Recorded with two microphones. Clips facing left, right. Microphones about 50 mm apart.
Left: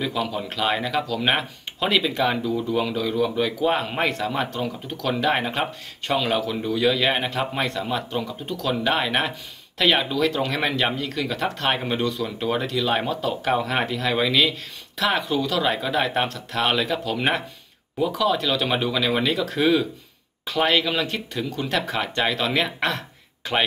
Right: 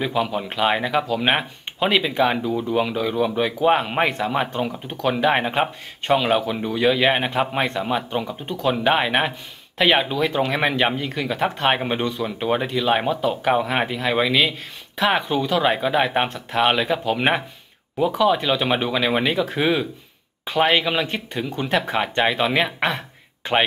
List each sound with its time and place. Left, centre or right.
0.0 s speech: right